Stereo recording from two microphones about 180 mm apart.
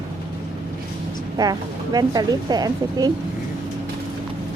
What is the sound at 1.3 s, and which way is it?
A woman's voice, 20° right (ahead or behind).